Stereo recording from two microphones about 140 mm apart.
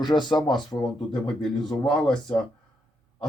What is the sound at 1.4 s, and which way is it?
Speech, centre (ahead or behind).